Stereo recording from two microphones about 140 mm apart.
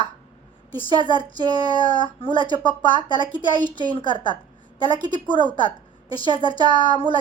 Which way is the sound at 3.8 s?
35° left (ahead or behind).